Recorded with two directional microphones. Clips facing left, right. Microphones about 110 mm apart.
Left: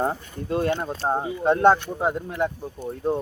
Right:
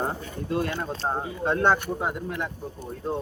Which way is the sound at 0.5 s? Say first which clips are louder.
Left 4 dB; 25° left (ahead or behind).